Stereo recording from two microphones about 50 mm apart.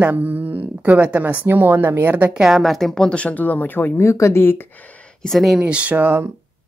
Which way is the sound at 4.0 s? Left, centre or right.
Left.